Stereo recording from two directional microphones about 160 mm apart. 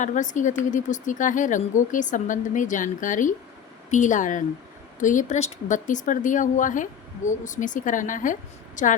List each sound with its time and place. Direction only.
0.0 s speech: 50° left (ahead or behind)